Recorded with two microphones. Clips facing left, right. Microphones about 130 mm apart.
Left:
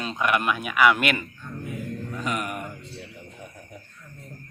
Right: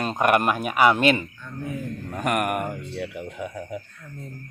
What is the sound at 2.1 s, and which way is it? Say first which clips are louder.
Speech: right 7 dB; 60° right (ahead or behind).